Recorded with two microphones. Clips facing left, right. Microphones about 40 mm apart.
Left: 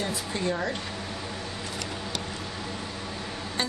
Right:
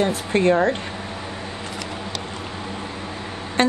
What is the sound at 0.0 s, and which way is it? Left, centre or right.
Speech, right.